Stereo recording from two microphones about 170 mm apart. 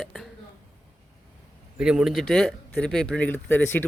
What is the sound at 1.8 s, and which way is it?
Speech, 5° right (ahead or behind).